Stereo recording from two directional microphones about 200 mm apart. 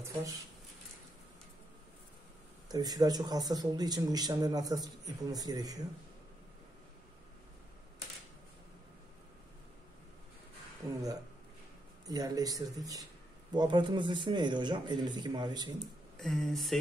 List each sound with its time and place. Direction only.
0.0 s a sound: 15° right (ahead or behind)
2.7 s speech: 20° right (ahead or behind)
12.1 s speech: 20° right (ahead or behind)
16.2 s speech: centre (ahead or behind)